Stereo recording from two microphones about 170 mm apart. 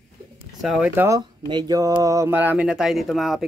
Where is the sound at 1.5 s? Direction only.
25° right (ahead or behind).